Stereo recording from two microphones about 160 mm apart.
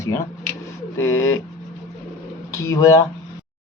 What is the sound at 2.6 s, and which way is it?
Speech, 20° left (ahead or behind).